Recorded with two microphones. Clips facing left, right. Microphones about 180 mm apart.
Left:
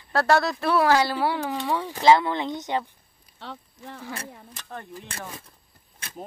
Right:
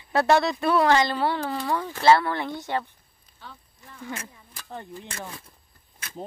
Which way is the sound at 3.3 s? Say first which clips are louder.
Left 7 dB; 70° left (ahead or behind).